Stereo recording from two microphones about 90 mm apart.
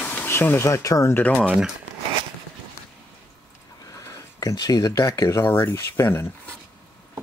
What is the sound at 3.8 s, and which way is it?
Speech, 35° left (ahead or behind).